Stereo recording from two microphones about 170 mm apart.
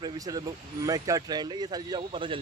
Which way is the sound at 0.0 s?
25° right (ahead or behind).